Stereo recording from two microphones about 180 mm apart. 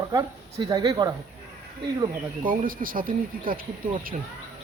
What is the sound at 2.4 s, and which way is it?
Speech, 50° right (ahead or behind).